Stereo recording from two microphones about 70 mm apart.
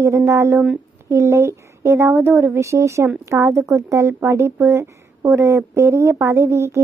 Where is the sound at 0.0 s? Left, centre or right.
Right.